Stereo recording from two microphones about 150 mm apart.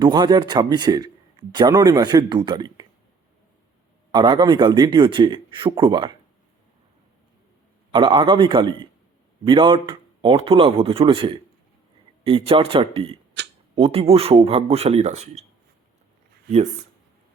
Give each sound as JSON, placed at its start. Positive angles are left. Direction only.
{"t": 0.0, "sound": "speech", "side_deg": -25}
{"t": 4.1, "sound": "speech", "side_deg": -30}
{"t": 7.9, "sound": "speech", "side_deg": -30}